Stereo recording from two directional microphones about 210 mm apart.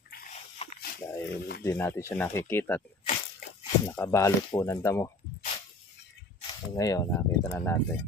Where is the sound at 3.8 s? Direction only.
15° left (ahead or behind).